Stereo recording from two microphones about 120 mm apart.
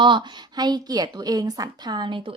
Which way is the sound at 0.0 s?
40° right (ahead or behind).